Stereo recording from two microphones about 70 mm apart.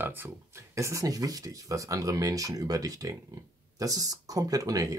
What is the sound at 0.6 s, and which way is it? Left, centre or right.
Speech, right.